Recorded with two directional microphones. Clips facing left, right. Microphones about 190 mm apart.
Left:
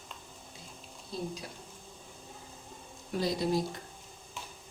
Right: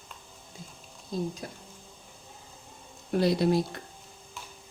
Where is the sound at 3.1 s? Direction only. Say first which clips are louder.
Right 6 dB; 65° right (ahead or behind).